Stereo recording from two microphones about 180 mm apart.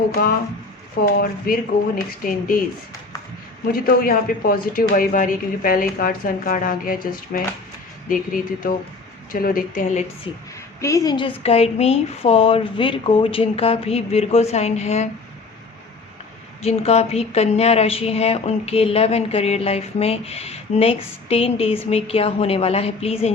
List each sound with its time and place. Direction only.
1.0 s speech: 55° left (ahead or behind)
3.7 s speech: 55° left (ahead or behind)
10.8 s speech: 15° left (ahead or behind); by 15.1 s 40° left (ahead or behind)
16.6 s speech: 35° left (ahead or behind)